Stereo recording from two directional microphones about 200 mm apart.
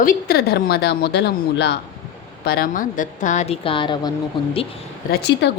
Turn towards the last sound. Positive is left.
turn(degrees=60)  # may be behind; listen again after turning